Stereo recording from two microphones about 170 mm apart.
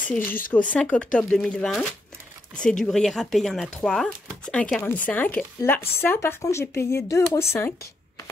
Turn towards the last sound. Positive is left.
turn(degrees=15)  # may be behind; listen again after turning